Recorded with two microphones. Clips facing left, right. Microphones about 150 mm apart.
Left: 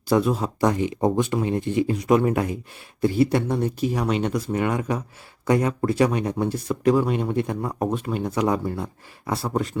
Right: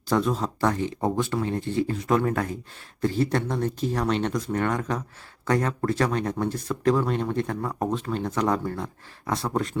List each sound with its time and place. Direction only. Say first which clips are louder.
0.1 s speech: left 3 dB; 10° left (ahead or behind)